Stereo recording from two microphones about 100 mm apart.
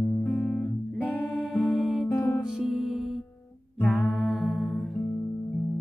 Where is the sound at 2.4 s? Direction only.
5° right (ahead or behind).